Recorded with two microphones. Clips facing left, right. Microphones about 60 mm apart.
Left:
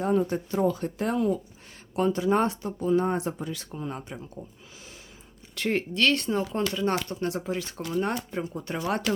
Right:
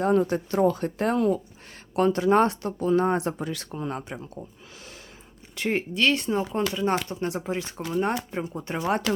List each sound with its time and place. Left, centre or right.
0.0 s speech: right
0.6 s speech: right
5.5 s speech: centre
6.9 s speech: right